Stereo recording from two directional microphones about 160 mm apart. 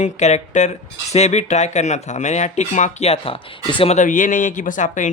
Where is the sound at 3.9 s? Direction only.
55° left (ahead or behind).